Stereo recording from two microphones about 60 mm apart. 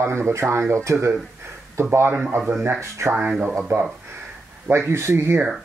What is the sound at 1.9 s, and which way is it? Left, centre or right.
Speech, right.